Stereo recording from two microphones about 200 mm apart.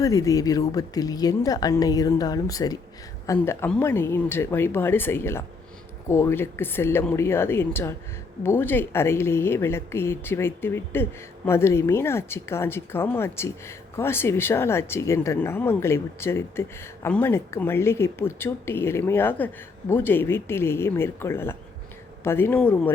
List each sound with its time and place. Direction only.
0.0 s a woman's voice: 15° left (ahead or behind)